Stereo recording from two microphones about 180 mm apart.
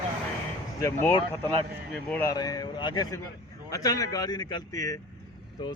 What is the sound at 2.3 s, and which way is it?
Speech, 20° left (ahead or behind).